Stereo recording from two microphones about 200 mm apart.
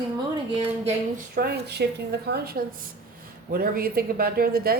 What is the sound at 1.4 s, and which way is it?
A woman's voice, 55° right (ahead or behind).